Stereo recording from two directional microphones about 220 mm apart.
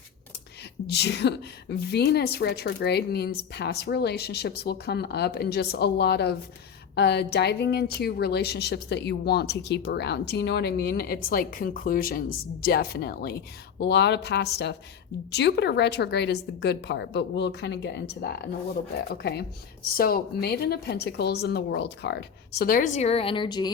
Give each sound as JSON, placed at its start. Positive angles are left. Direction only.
{"t": 0.9, "sound": "a woman's voice", "side_deg": 50}